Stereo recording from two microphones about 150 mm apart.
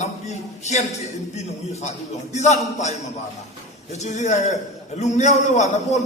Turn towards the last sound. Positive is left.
turn(degrees=50)  # may be behind; listen again after turning